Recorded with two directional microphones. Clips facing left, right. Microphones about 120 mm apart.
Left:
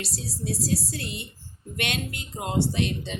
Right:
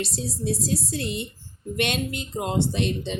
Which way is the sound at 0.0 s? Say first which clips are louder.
Right 5 dB; 20° right (ahead or behind).